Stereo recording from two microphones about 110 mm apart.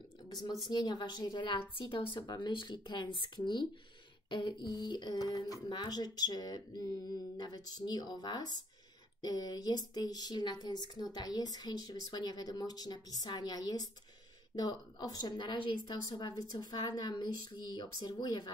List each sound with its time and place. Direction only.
0.3 s a woman's voice: 35° left (ahead or behind)